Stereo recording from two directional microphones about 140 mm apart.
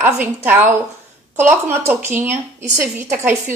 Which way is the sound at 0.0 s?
15° right (ahead or behind).